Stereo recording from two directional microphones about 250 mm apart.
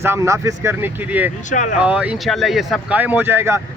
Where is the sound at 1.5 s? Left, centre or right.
Left.